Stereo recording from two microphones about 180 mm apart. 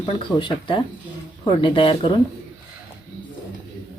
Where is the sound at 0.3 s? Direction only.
25° left (ahead or behind).